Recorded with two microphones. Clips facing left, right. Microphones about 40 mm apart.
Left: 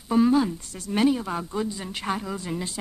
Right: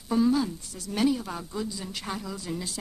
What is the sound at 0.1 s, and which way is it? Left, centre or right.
Speech, left.